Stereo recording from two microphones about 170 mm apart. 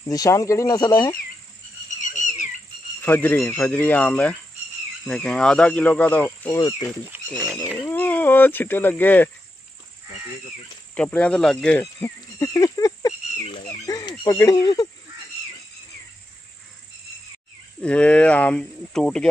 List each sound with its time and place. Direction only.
0.1 s speech: 20° left (ahead or behind)
2.1 s a sound: 45° left (ahead or behind)
3.0 s speech: 10° left (ahead or behind)
7.1 s horse: 15° right (ahead or behind)
7.8 s speech: 10° left (ahead or behind)
11.0 s speech: 5° left (ahead or behind)
11.8 s a sound: 20° left (ahead or behind)
17.8 s speech: 5° left (ahead or behind)